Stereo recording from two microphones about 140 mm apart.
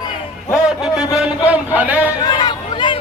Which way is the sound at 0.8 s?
5° right (ahead or behind).